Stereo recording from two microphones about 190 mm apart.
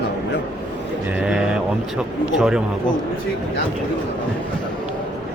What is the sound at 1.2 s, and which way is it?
Speech, 5° right (ahead or behind).